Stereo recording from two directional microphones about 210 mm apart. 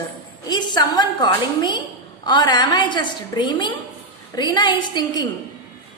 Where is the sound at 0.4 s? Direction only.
20° left (ahead or behind).